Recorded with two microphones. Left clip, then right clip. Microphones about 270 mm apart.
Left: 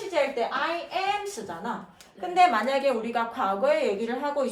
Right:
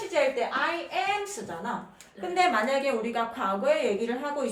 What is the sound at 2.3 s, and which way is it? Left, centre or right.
A woman's voice, centre.